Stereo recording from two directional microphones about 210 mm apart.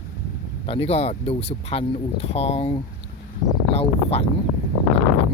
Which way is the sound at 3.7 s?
30° left (ahead or behind).